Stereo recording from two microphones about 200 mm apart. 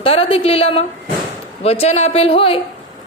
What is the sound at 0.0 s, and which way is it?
A woman's voice, 30° left (ahead or behind).